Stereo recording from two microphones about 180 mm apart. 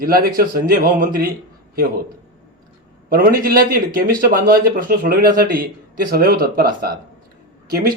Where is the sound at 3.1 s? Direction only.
55° right (ahead or behind).